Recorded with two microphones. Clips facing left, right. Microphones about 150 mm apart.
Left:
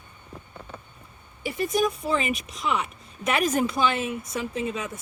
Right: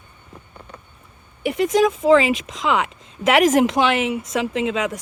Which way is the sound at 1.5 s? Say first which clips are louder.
Right 7 dB; 85° right.